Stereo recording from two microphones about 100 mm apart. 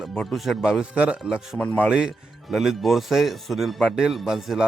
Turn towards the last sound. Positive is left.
turn(degrees=-5)  # may be behind; listen again after turning